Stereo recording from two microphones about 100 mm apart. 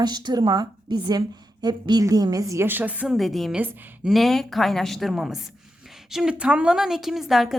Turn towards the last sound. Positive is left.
turn(degrees=0)  # may be behind; listen again after turning